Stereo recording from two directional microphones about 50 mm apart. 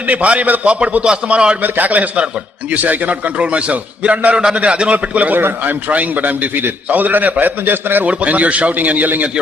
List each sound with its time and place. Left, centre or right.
0.1 s a man's voice: right
1.6 s a man's voice: right
4.4 s a man's voice: centre; by 8.0 s right
8.0 s a man's voice: right